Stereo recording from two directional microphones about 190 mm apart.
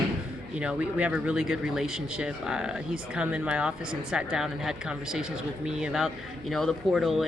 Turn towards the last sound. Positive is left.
turn(degrees=0)  # may be behind; listen again after turning